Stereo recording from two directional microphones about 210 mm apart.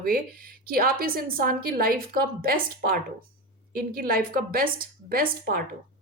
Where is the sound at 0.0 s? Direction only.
45° right (ahead or behind).